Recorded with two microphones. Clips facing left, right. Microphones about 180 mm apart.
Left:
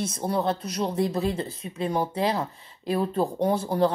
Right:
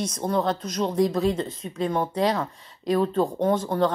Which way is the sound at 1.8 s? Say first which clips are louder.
Right 2 dB; 35° left (ahead or behind).